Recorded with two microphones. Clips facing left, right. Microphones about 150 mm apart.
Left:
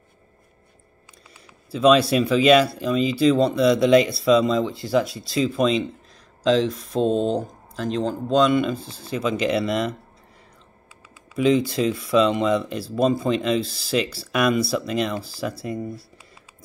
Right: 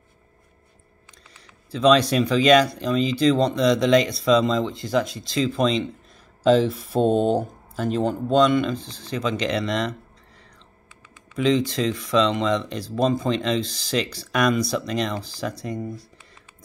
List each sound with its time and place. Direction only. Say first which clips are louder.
1.7 s speech: left 1 dB; 5° left (ahead or behind)
11.3 s speech: left 2 dB; 5° left (ahead or behind)